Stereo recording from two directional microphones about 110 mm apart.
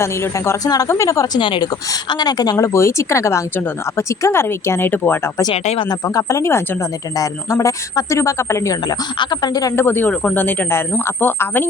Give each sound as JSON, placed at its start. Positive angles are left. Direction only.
{"t": 0.0, "sound": "speech", "side_deg": 25}
{"t": 1.4, "sound": "speech", "side_deg": 50}
{"t": 2.0, "sound": "speech", "side_deg": 40}
{"t": 5.9, "sound": "speech", "side_deg": 30}
{"t": 9.1, "sound": "speech", "side_deg": 40}
{"t": 9.7, "sound": "speech", "side_deg": 20}